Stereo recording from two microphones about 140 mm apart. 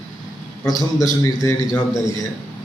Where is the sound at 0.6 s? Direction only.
25° left (ahead or behind).